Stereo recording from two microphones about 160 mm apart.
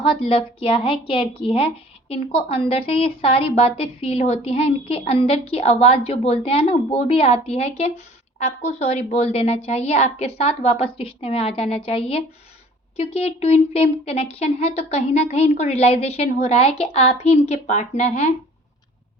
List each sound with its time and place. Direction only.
0.0 s a woman's voice: 35° left (ahead or behind)